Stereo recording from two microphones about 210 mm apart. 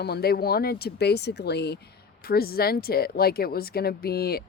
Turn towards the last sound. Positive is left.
turn(degrees=50)  # may be behind; listen again after turning